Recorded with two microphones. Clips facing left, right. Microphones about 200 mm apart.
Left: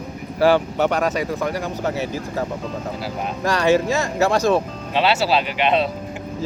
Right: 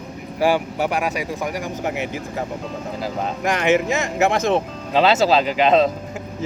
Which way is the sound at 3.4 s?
20° right (ahead or behind).